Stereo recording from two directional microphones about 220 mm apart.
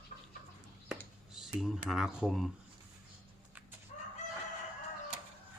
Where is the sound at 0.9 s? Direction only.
Centre (ahead or behind).